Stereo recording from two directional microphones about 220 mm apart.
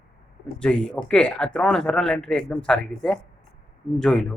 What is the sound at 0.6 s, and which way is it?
Speech, 5° left (ahead or behind).